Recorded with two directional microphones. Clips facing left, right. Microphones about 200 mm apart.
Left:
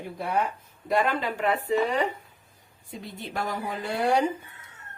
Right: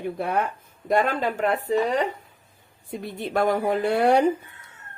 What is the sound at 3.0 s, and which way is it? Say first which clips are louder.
A woman's voice: right 9 dB; 60° right (ahead or behind).